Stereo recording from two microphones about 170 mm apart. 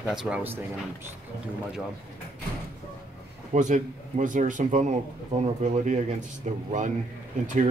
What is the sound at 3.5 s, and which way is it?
Speech, 45° right (ahead or behind).